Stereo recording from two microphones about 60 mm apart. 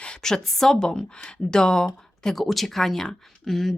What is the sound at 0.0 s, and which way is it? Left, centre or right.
A woman's voice, centre.